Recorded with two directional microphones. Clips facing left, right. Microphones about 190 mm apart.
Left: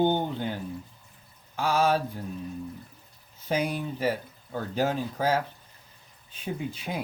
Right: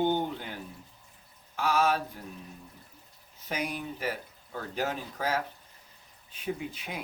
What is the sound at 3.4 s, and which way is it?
Speech, 30° left (ahead or behind).